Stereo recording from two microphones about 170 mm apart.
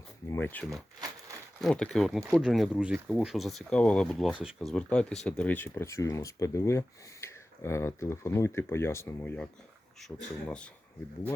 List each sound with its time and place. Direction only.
0.3 s speech: 15° left (ahead or behind)
1.6 s speech: 5° left (ahead or behind)